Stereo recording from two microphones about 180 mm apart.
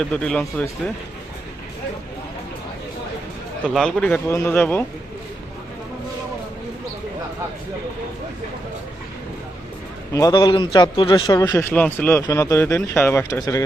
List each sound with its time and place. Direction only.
0.0 s speech: 5° left (ahead or behind)
3.7 s speech: centre (ahead or behind)
10.1 s a man's voice: 20° left (ahead or behind)
11.7 s speech: 10° left (ahead or behind)